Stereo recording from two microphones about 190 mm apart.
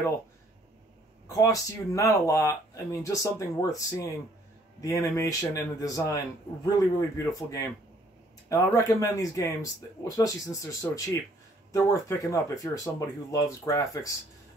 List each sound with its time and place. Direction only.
1.3 s a man's voice: 15° left (ahead or behind)
4.8 s a man's voice: 15° left (ahead or behind)